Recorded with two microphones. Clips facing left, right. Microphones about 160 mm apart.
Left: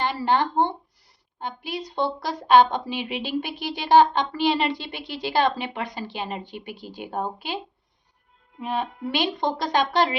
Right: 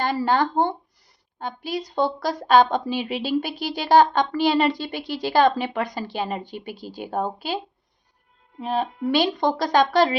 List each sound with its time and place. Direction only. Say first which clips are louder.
0.0 s speech: right 2 dB; 40° right (ahead or behind)